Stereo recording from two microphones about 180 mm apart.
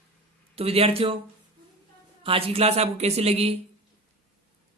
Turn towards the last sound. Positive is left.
turn(degrees=-35)  # may be behind; listen again after turning